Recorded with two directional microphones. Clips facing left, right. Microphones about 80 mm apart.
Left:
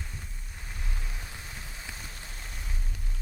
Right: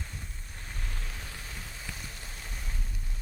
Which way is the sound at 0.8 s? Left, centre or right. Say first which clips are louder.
Even; centre.